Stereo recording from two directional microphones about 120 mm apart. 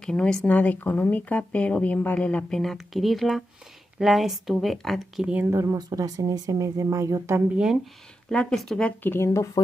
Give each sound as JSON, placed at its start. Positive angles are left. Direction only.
{"t": 0.0, "sound": "speech", "side_deg": 5}
{"t": 5.5, "sound": "speech", "side_deg": -25}
{"t": 7.5, "sound": "speech", "side_deg": -5}
{"t": 8.3, "sound": "speech", "side_deg": 5}